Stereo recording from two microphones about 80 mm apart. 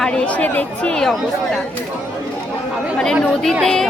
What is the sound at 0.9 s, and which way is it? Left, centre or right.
Speech, centre.